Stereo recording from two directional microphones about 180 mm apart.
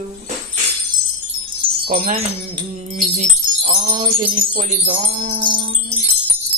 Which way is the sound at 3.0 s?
40° right (ahead or behind).